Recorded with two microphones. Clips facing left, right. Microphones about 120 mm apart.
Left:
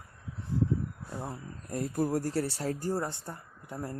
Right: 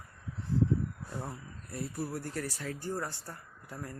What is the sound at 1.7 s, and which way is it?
Speech, 45° left (ahead or behind).